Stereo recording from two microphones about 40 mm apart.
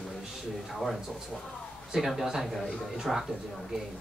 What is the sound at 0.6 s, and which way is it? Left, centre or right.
Speech, centre.